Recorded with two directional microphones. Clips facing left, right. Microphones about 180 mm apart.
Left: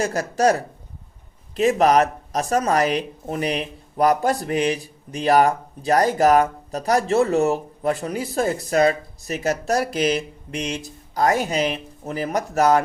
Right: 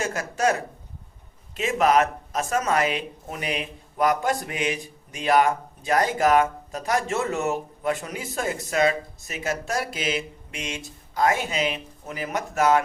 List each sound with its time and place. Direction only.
0.0 s speech: 35° left (ahead or behind)
1.5 s speech: 40° left (ahead or behind)